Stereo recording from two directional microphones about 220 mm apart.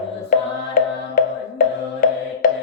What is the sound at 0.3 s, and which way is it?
Music, 40° left (ahead or behind).